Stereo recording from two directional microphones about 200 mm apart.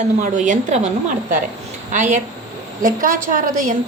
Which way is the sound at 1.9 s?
35° right (ahead or behind).